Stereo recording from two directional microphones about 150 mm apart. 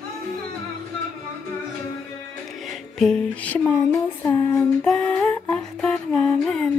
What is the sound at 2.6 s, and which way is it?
Music, centre (ahead or behind).